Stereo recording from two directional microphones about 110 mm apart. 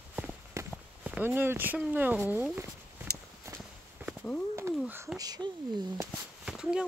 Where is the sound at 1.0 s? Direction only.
15° right (ahead or behind).